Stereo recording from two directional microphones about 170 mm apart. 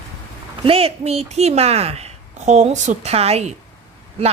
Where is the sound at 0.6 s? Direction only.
35° right (ahead or behind).